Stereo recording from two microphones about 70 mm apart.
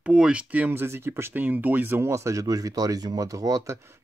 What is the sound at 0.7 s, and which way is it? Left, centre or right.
Speech, right.